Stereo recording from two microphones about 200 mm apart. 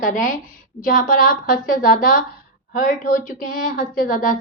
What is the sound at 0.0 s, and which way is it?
A woman's voice, 40° left (ahead or behind).